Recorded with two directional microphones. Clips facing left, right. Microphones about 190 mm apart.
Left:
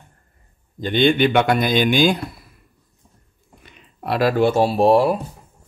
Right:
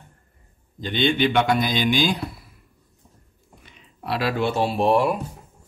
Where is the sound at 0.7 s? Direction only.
50° left (ahead or behind).